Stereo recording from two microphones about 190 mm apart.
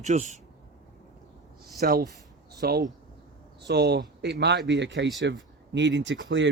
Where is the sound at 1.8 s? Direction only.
50° right (ahead or behind); by 6.5 s 75° right (ahead or behind).